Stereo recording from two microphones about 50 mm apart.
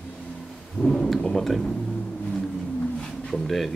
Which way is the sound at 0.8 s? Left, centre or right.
Centre.